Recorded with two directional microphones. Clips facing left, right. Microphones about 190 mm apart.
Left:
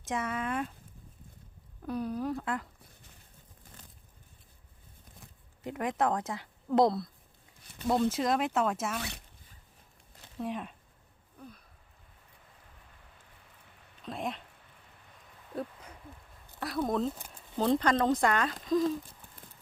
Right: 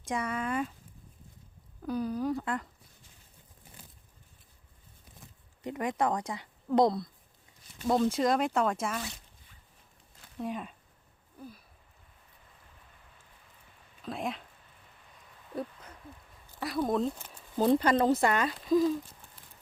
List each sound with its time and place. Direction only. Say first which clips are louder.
0.0 s speech: right 1 dB; centre (ahead or behind)
1.8 s speech: right 2 dB; centre (ahead or behind)
5.6 s speech: even; centre (ahead or behind)
9.0 s speech: even; 65° left (ahead or behind)
10.3 s speech: even; centre (ahead or behind)
11.3 s a sound: right 3 dB; 5° right (ahead or behind)
14.0 s speech: right 1 dB; centre (ahead or behind)
16.6 s speech: right 1 dB; centre (ahead or behind)